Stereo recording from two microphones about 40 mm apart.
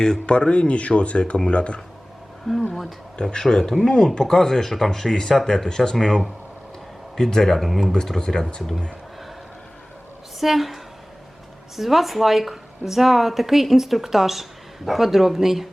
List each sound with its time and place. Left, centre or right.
0.0 s speech: left
2.5 s a sound: centre
3.2 s speech: left; by 5.6 s centre
5.6 s speech: centre
10.4 s speech: centre
11.8 s speech: centre